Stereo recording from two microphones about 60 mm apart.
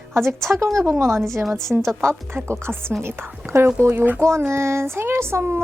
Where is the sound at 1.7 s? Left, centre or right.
Centre.